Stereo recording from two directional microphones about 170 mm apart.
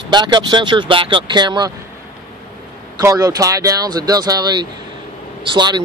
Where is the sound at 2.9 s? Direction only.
20° right (ahead or behind).